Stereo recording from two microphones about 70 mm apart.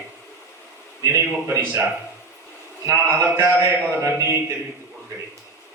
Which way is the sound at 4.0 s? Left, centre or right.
Right.